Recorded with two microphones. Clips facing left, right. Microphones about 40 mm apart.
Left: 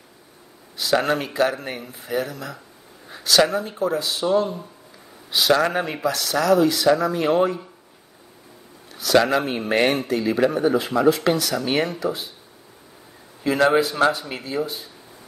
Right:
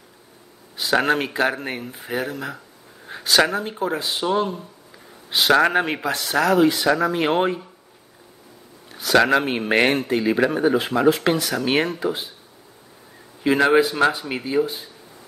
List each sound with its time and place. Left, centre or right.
0.7 s speech: right
5.5 s speech: right
8.9 s speech: right
11.6 s speech: right
13.4 s speech: right